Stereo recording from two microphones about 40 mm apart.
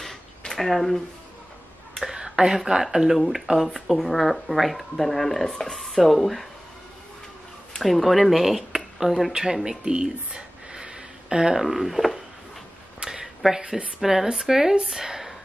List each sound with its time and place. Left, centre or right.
0.6 s speech: centre
2.1 s a sound: centre
2.6 s speech: centre
7.7 s speech: centre
9.7 s speech: right
10.0 s a sound: right
11.6 s speech: centre
13.0 s a sound: centre
13.6 s speech: right
14.0 s speech: centre